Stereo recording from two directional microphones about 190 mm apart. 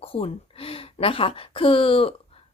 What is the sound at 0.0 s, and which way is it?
Speech, 30° left (ahead or behind).